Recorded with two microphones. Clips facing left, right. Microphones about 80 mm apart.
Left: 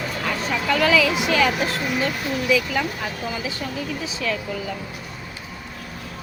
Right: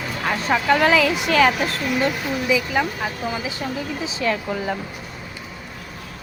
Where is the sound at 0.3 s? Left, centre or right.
Right.